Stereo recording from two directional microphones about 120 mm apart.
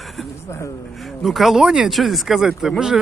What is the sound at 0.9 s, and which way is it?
Speech, centre (ahead or behind).